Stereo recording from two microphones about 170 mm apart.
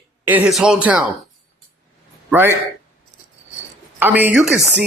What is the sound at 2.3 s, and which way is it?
Speech, 15° right (ahead or behind).